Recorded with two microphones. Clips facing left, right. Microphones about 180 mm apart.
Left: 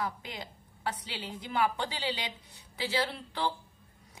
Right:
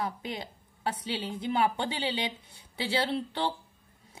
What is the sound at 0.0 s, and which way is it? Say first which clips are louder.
A woman's voice: right 3 dB; 25° right (ahead or behind).